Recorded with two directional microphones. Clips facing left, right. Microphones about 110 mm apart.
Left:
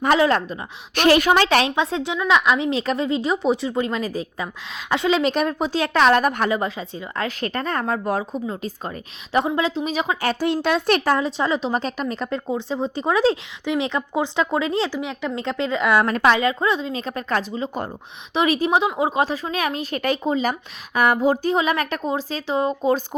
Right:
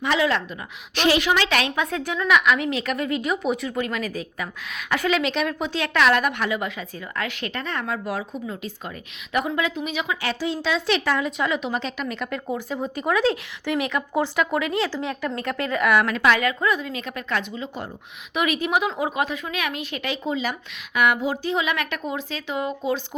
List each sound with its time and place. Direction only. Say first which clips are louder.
0.0 s speech: left 5 dB; 45° left (ahead or behind)
0.9 s a woman's voice: left 4 dB; 50° left (ahead or behind)
1.3 s a woman's voice: left 5 dB; 35° left (ahead or behind)
5.2 s a woman's voice: left 4 dB; 40° left (ahead or behind)
14.8 s a woman's voice: left 1 dB; 15° left (ahead or behind); by 23.0 s 40° left (ahead or behind)